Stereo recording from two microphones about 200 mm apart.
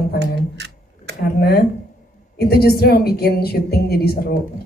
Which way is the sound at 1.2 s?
50° left (ahead or behind).